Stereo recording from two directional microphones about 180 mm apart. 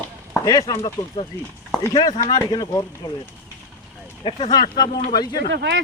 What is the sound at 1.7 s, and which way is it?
Speech, 20° left (ahead or behind).